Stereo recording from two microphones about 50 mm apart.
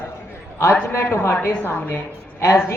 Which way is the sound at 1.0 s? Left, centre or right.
Left.